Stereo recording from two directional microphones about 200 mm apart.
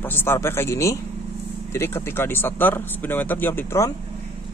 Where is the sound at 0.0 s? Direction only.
10° left (ahead or behind).